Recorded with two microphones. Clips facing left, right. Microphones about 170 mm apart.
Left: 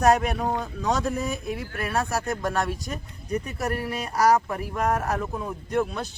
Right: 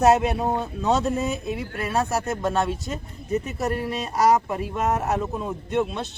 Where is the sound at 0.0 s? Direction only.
25° right (ahead or behind).